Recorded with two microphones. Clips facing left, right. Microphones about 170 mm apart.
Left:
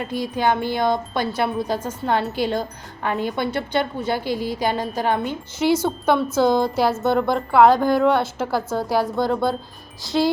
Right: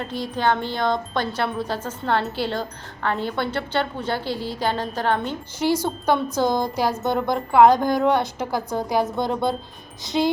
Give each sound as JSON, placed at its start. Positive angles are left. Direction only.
{"t": 0.0, "sound": "speech", "side_deg": 10}
{"t": 5.7, "sound": "a woman's voice", "side_deg": -10}
{"t": 10.0, "sound": "music", "side_deg": -20}